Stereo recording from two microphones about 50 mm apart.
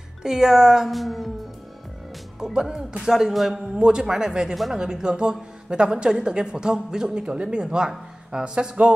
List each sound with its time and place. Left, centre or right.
0.2 s speech: centre
2.4 s a man's voice: centre
3.7 s speech: centre
4.6 s a man's voice: centre
4.8 s speech: centre